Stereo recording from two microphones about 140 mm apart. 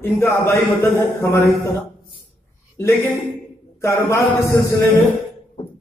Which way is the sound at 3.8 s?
20° left (ahead or behind).